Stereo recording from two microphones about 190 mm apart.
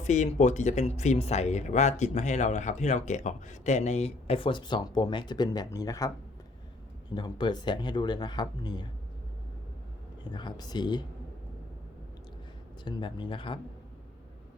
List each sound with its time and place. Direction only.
0.0 s speech: 40° left (ahead or behind); by 6.1 s 20° left (ahead or behind)
7.1 s speech: 25° left (ahead or behind)
10.3 s speech: 20° left (ahead or behind)
12.8 s speech: 25° left (ahead or behind)